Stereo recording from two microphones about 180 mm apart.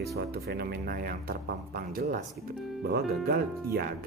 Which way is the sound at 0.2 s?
60° right (ahead or behind).